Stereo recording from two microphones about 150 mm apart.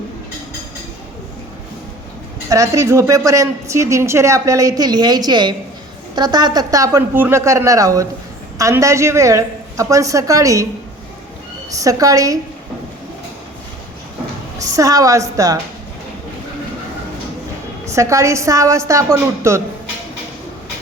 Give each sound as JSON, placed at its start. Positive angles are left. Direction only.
{"t": 2.5, "sound": "a woman's voice", "side_deg": -20}
{"t": 11.7, "sound": "a woman's voice", "side_deg": -20}
{"t": 14.6, "sound": "a woman's voice", "side_deg": -20}
{"t": 17.8, "sound": "a woman's voice", "side_deg": -20}